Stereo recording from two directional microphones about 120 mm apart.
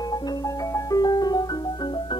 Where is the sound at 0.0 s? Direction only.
35° left (ahead or behind).